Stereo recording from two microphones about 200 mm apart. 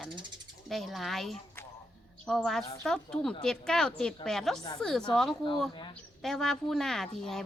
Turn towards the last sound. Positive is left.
turn(degrees=0)  # may be behind; listen again after turning